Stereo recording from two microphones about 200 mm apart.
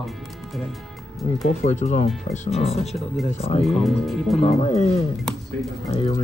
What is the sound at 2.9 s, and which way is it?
Speech, centre (ahead or behind).